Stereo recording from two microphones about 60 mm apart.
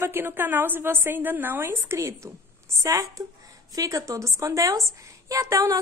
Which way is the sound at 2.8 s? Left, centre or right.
Right.